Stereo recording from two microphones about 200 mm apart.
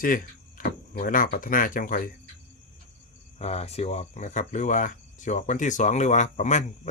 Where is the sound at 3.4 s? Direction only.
30° left (ahead or behind).